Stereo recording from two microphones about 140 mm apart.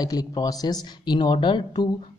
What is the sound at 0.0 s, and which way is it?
Speech, 30° left (ahead or behind).